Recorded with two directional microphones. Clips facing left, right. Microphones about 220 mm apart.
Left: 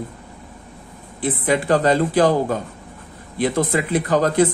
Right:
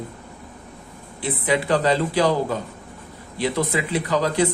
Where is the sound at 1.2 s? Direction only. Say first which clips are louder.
Left 3 dB; 45° left (ahead or behind).